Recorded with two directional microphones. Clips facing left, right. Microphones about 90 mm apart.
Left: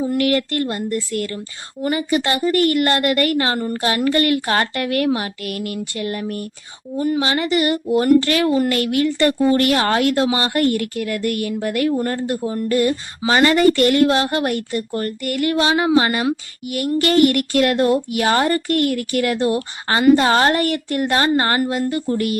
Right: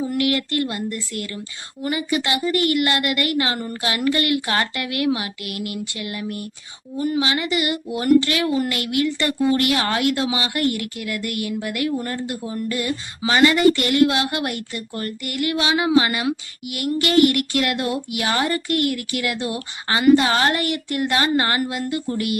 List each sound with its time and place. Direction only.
0.2 s speech: 40° left (ahead or behind)